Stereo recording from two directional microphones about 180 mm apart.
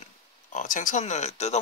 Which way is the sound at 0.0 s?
45° left (ahead or behind).